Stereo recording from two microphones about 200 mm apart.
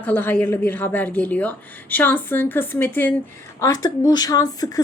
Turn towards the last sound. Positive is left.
turn(degrees=20)  # may be behind; listen again after turning